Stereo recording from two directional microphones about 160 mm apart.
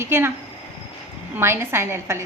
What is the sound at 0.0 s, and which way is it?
Speech, 15° right (ahead or behind).